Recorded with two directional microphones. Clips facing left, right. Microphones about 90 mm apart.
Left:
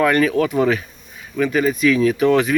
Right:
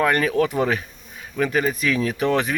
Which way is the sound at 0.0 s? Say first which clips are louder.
Left 3 dB; 30° right (ahead or behind).